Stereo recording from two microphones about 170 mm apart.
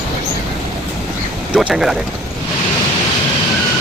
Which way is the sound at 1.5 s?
5° right (ahead or behind).